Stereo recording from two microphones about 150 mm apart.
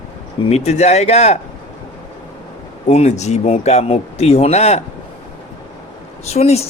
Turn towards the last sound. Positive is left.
turn(degrees=45)  # may be behind; listen again after turning